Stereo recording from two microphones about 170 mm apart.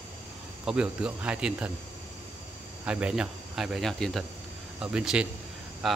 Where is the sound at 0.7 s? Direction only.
5° right (ahead or behind).